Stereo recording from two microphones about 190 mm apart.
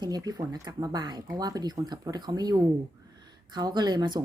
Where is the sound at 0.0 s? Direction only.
20° right (ahead or behind).